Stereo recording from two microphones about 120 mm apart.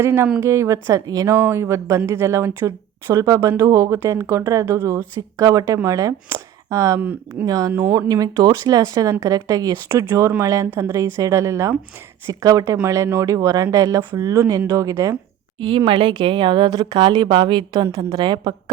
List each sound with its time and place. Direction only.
0.0 s a woman's voice: 20° right (ahead or behind)
7.0 s speech: 10° right (ahead or behind)
7.4 s a woman's voice: 30° right (ahead or behind)
15.5 s speech: 45° right (ahead or behind)